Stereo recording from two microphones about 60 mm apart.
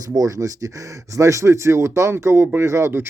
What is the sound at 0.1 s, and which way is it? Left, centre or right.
Speech, right.